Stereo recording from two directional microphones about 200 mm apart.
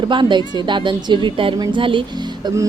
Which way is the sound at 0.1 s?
25° right (ahead or behind).